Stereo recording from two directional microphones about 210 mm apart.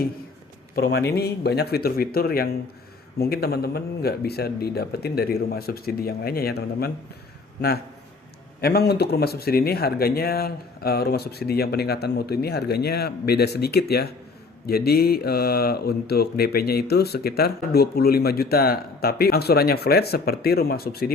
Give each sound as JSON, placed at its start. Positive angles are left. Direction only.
{"t": 0.8, "sound": "speech", "side_deg": 50}
{"t": 8.6, "sound": "speech", "side_deg": 50}